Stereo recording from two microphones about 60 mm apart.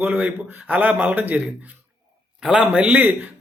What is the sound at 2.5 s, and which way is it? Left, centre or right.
Speech, centre.